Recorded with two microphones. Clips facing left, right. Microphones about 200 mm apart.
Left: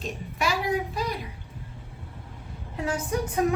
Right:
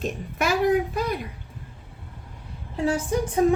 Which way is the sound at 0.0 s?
50° right (ahead or behind).